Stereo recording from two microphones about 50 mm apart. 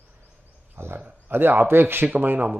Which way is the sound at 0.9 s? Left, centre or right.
Right.